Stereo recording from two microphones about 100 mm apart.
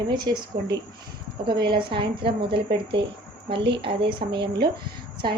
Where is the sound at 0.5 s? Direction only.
35° right (ahead or behind).